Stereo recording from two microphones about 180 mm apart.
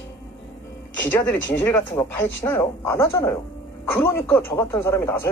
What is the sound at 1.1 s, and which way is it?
Speech, 10° left (ahead or behind).